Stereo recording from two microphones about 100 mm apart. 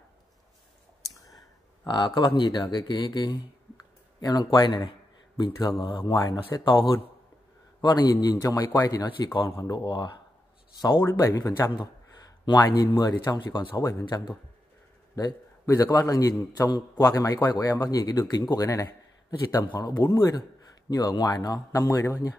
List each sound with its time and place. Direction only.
1.9 s speech: 50° left (ahead or behind)
6.1 s a man's voice: 40° left (ahead or behind)
6.6 s a man's voice: 55° left (ahead or behind); by 9.3 s 35° left (ahead or behind)
9.7 s speech: 50° left (ahead or behind)
11.1 s a man's voice: 30° left (ahead or behind)
12.4 s a man's voice: 45° left (ahead or behind)
13.7 s a man's voice: 35° left (ahead or behind)
14.0 s speech: 50° left (ahead or behind)
15.1 s a man's voice: 35° left (ahead or behind)